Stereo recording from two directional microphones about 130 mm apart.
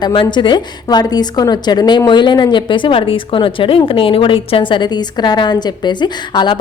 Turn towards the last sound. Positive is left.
turn(degrees=35)  # may be behind; listen again after turning